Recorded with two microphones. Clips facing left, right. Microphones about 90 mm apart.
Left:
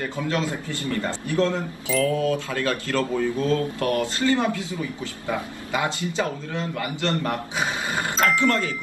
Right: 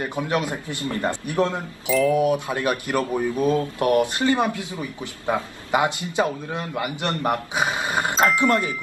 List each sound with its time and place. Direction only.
0.0 s a man's voice: 20° right (ahead or behind)